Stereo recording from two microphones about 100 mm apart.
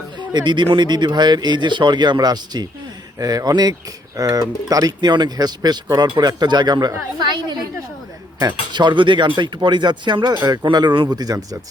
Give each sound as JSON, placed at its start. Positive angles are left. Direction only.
{"t": 0.2, "sound": "speech", "side_deg": -50}